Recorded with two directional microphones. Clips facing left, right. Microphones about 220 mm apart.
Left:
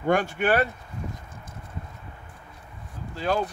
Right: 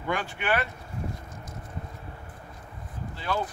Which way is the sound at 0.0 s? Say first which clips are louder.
Left 8 dB; 45° left (ahead or behind).